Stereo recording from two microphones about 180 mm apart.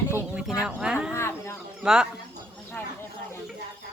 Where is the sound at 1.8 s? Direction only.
5° right (ahead or behind).